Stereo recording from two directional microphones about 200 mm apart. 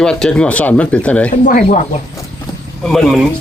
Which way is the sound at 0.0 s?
5° left (ahead or behind).